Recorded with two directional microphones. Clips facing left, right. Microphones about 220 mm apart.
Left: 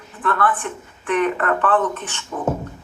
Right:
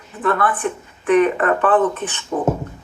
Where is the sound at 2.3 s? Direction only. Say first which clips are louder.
Right 6 dB; 25° right (ahead or behind).